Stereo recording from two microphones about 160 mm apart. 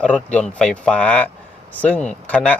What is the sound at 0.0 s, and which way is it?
Speech, 5° left (ahead or behind).